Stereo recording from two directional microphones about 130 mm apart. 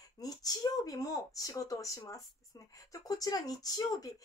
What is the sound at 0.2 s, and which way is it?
Speech, 30° left (ahead or behind).